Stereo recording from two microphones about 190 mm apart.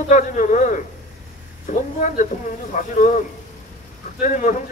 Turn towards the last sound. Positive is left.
turn(degrees=45)  # may be behind; listen again after turning